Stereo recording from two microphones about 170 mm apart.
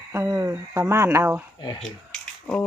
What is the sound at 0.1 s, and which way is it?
Speech, 15° right (ahead or behind).